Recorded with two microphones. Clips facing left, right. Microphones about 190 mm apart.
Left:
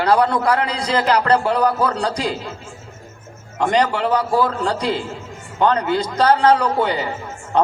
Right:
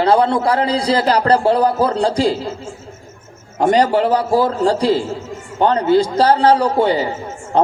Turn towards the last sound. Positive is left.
turn(degrees=-30)  # may be behind; listen again after turning